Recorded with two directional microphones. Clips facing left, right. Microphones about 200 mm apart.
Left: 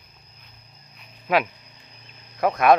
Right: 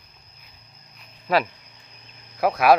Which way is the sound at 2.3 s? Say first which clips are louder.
Even; 5° right (ahead or behind).